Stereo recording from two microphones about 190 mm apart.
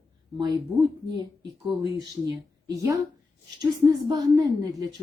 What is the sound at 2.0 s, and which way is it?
A woman's voice, 20° right (ahead or behind).